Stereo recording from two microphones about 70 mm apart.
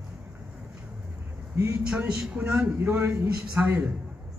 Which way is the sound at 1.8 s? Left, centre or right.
Centre.